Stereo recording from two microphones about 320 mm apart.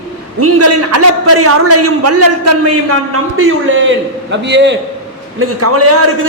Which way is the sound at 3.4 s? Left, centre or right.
Right.